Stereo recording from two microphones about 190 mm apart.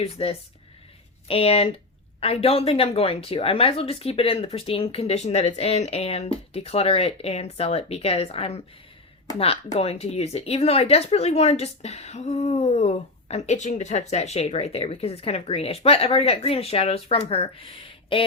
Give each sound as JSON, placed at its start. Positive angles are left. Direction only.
{"t": 0.0, "sound": "speech", "side_deg": 30}
{"t": 9.7, "sound": "speech", "side_deg": 35}